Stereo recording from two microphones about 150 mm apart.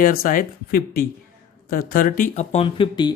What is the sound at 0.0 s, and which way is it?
Speech, 70° left (ahead or behind).